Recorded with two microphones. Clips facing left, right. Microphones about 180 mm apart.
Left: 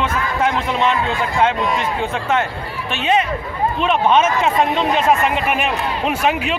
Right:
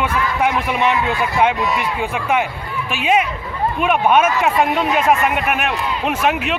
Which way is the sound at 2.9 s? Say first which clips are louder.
Even; 10° right (ahead or behind).